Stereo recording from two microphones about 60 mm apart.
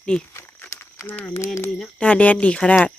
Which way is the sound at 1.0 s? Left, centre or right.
Left.